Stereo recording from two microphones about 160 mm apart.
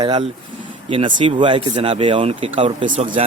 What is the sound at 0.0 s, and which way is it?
Speech, 30° right (ahead or behind).